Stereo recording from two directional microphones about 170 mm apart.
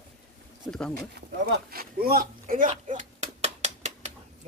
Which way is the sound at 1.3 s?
65° right (ahead or behind).